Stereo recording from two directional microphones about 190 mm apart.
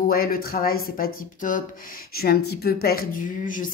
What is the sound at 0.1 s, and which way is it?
Speech, 50° left (ahead or behind).